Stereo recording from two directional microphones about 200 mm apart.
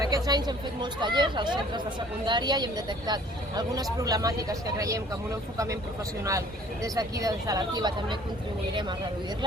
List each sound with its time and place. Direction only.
0.0 s speech: 20° right (ahead or behind)
6.8 s speech: 15° right (ahead or behind)